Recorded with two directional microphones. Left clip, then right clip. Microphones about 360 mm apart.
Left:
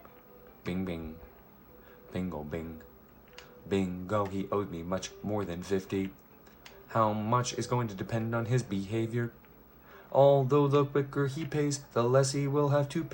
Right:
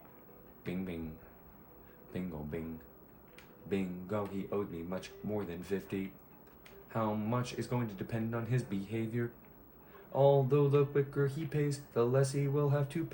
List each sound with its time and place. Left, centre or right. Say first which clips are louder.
0.6 s speech: left 5 dB; left
3.7 s speech: left 6 dB; left